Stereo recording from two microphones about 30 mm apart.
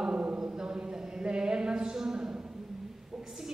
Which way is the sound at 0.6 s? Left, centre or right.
Right.